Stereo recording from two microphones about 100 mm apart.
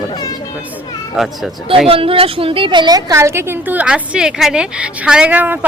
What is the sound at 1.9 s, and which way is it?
A woman's voice, 65° right (ahead or behind).